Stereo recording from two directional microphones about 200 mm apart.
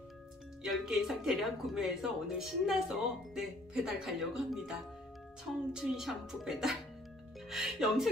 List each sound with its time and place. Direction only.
0.7 s speech: centre (ahead or behind)